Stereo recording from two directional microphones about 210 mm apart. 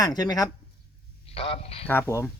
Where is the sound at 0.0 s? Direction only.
20° left (ahead or behind).